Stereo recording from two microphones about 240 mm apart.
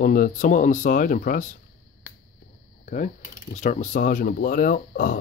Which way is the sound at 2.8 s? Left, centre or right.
Left.